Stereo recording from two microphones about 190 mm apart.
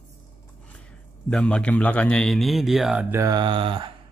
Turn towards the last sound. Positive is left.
turn(degrees=-25)  # may be behind; listen again after turning